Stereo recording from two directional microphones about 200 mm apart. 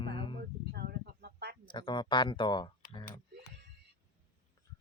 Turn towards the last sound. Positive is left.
turn(degrees=25)  # may be behind; listen again after turning